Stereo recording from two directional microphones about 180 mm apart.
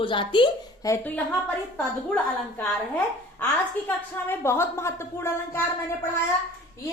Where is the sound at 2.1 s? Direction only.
5° left (ahead or behind).